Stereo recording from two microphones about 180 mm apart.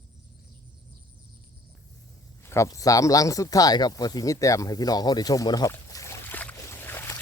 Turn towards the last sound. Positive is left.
turn(degrees=15)  # may be behind; listen again after turning